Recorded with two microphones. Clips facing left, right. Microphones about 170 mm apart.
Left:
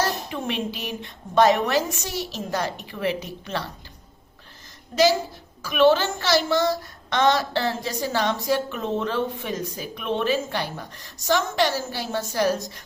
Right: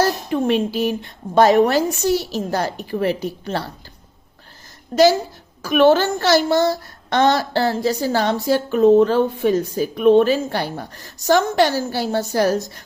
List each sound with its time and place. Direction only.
0.0 s a woman's voice: 45° right (ahead or behind)
4.9 s a woman's voice: 50° right (ahead or behind)